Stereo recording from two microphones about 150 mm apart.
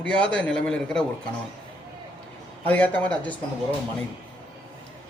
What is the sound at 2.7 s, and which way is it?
Speech, 10° left (ahead or behind).